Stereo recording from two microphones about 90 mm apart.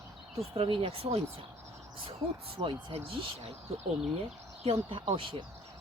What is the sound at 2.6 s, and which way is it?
Speech, 60° right (ahead or behind).